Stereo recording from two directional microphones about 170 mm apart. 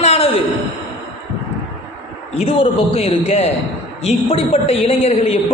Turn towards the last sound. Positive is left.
turn(degrees=35)  # may be behind; listen again after turning